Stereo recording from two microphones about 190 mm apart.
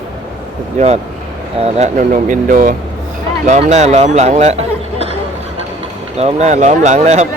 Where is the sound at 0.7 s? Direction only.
35° right (ahead or behind).